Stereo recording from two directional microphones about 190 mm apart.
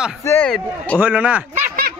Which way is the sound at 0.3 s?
10° left (ahead or behind).